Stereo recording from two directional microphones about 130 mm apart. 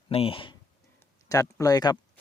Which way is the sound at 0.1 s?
45° left (ahead or behind).